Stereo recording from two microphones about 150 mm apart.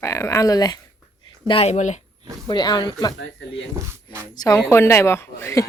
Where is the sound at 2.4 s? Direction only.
30° left (ahead or behind).